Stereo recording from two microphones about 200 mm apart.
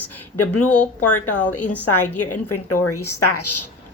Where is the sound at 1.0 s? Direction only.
90° left.